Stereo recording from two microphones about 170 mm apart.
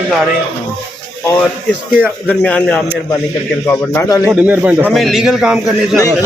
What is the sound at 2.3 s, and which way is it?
Speech, 10° left (ahead or behind).